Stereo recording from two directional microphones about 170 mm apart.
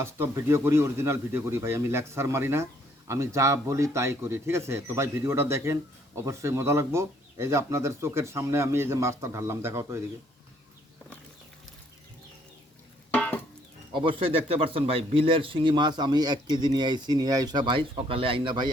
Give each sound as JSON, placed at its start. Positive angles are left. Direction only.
{"t": 0.0, "sound": "speech", "side_deg": -15}
{"t": 13.1, "sound": "music", "side_deg": 10}
{"t": 13.9, "sound": "speech", "side_deg": -30}